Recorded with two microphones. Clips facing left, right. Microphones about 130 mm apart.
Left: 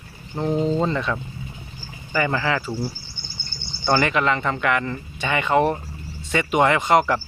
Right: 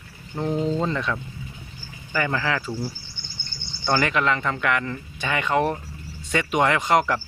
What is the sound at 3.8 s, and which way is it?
Speech, 5° left (ahead or behind).